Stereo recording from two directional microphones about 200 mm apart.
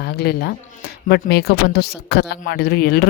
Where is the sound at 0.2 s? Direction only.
50° left (ahead or behind).